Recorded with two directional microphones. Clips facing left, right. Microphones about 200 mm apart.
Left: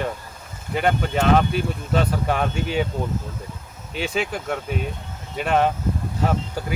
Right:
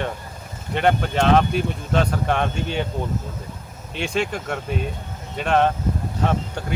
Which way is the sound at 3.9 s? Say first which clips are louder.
Right 1 dB; 5° left (ahead or behind).